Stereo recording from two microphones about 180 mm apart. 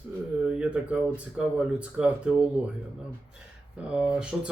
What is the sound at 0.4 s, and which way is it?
Cough, 5° right (ahead or behind).